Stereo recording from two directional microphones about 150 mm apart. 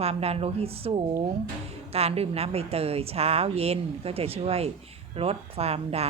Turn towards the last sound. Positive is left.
turn(degrees=-45)  # may be behind; listen again after turning